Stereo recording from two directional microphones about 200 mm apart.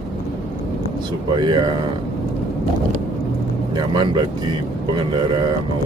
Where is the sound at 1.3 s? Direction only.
20° right (ahead or behind).